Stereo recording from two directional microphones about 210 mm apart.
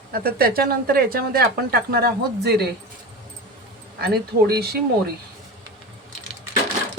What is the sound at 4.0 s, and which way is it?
Speech, 50° right (ahead or behind).